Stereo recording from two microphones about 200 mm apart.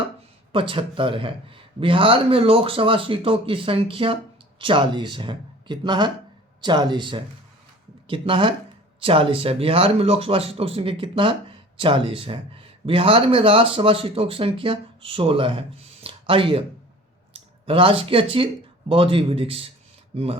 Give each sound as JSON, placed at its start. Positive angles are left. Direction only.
{"t": 0.5, "sound": "speech", "side_deg": -25}